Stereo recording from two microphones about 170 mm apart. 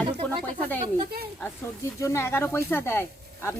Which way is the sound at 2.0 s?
15° left (ahead or behind).